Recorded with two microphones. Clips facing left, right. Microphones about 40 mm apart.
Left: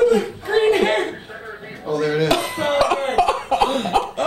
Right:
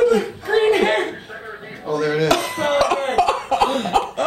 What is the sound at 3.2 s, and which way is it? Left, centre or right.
Cough, centre.